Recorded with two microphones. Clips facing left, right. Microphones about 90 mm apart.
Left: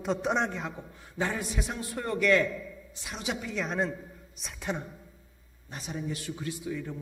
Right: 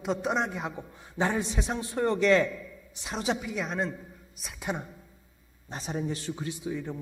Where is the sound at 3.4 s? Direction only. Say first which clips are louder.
Left 1 dB; 5° right (ahead or behind).